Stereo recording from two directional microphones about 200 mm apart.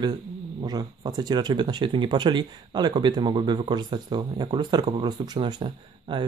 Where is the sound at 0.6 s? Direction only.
20° right (ahead or behind).